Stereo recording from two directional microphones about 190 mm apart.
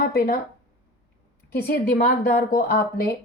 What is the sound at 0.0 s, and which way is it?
Speech, 50° left (ahead or behind).